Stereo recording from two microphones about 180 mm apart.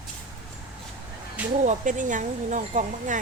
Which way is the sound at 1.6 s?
45° right (ahead or behind).